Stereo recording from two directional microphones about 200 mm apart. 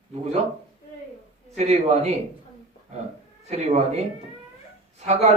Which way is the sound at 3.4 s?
35° right (ahead or behind).